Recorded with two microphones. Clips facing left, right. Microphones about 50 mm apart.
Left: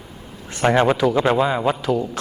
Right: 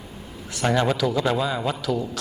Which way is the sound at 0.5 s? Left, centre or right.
Left.